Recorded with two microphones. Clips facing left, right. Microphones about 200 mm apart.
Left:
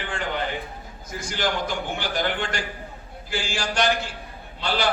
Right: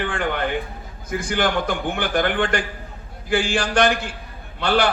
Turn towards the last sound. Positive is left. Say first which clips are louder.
# right 6 dB
turn(degrees=-55)  # may be behind; listen again after turning